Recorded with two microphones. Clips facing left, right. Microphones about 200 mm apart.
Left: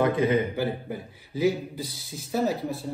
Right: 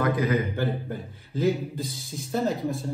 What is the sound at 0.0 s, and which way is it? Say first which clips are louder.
Speech: left 2 dB; 30° left (ahead or behind).